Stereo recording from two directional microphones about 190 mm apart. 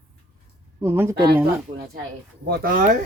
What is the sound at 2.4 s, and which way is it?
Speech, 50° right (ahead or behind).